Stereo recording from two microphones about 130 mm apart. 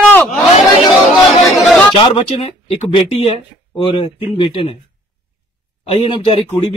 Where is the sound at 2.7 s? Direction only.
55° left (ahead or behind).